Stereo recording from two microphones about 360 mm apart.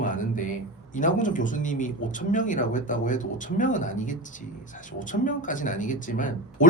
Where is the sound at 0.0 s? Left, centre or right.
Left.